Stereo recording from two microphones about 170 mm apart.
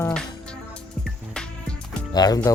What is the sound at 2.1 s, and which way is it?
Speech, 25° left (ahead or behind).